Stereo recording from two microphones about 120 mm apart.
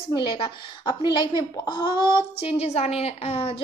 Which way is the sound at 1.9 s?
25° right (ahead or behind).